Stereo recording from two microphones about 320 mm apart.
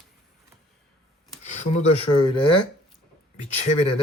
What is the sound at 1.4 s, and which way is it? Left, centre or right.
Speech, centre.